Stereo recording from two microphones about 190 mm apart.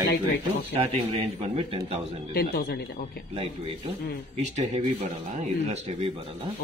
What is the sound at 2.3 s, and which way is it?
Speech, 55° left (ahead or behind).